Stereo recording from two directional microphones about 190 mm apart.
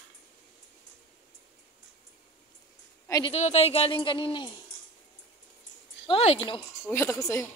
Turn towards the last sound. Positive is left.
turn(degrees=15)  # may be behind; listen again after turning